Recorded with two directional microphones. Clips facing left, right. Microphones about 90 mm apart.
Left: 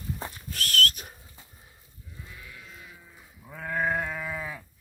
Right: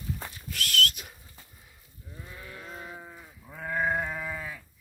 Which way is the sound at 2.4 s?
45° right (ahead or behind).